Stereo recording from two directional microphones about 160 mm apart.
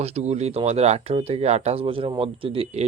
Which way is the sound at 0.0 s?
45° right (ahead or behind).